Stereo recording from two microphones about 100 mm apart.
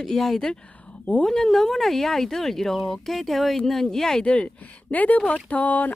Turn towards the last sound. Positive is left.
turn(degrees=15)  # may be behind; listen again after turning